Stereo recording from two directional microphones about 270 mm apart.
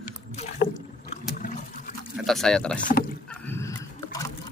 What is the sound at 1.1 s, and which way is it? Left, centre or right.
Water, left.